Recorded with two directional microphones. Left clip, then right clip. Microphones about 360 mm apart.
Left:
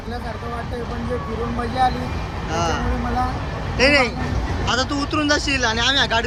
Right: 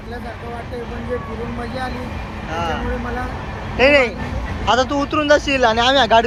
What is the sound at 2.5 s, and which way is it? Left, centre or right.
Speech, centre.